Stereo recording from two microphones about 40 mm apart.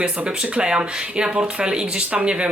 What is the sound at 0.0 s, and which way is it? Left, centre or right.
Speech, right.